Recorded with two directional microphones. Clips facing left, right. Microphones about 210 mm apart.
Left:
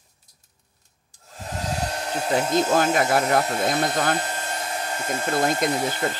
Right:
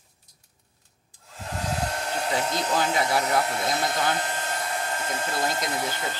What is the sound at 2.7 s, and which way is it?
Speech, 50° left (ahead or behind).